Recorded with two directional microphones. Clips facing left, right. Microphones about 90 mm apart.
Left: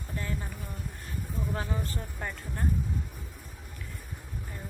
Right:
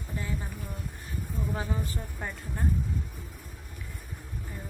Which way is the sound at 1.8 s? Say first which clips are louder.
Even; 10° right (ahead or behind).